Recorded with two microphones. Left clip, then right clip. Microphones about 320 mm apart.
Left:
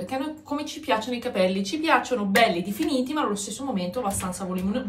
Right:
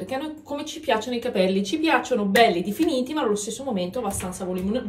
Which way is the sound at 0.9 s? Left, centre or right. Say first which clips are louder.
Right 1 dB; left.